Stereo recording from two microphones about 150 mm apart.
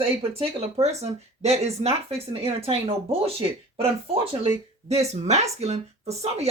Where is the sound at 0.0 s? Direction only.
40° right (ahead or behind).